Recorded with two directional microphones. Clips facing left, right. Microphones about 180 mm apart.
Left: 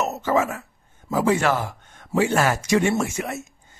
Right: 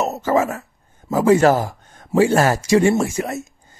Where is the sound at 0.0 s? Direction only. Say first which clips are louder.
Right 3 dB; 35° right (ahead or behind).